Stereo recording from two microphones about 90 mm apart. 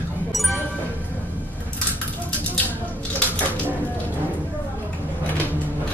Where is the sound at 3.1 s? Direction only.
15° left (ahead or behind).